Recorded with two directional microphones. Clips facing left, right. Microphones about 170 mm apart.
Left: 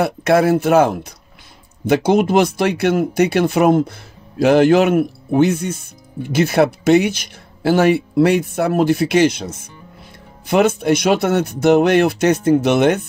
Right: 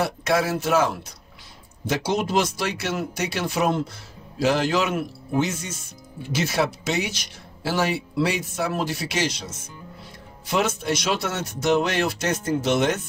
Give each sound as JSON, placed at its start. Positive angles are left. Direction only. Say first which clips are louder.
{"t": 0.0, "sound": "speech", "louder": "left 8 dB", "side_deg": 60}